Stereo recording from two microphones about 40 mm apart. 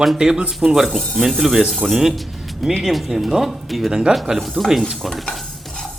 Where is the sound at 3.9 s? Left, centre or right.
Centre.